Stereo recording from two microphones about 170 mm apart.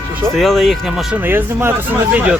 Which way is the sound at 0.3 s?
Centre (ahead or behind).